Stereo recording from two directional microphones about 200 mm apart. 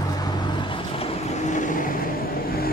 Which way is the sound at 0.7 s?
30° left (ahead or behind).